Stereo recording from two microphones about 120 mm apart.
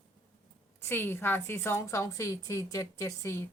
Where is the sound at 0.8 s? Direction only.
15° left (ahead or behind).